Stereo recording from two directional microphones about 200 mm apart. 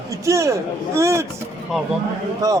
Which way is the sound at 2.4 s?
20° right (ahead or behind).